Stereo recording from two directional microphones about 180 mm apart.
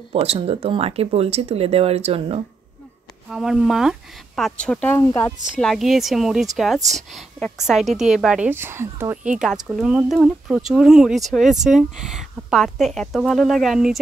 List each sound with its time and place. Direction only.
0.1 s speech: 35° right (ahead or behind)
3.3 s a woman's voice: centre (ahead or behind); by 5.3 s 15° left (ahead or behind)
5.6 s a woman's voice: centre (ahead or behind)